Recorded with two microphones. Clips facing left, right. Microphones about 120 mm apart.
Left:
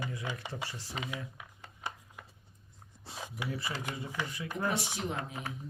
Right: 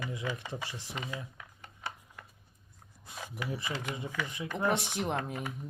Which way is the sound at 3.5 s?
20° right (ahead or behind).